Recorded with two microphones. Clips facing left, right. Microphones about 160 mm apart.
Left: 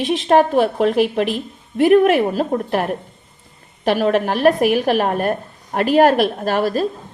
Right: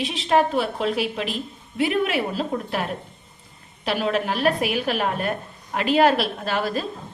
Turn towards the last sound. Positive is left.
turn(degrees=40)  # may be behind; listen again after turning